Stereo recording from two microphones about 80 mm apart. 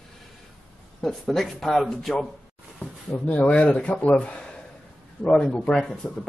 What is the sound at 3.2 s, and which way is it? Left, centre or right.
Speech, centre.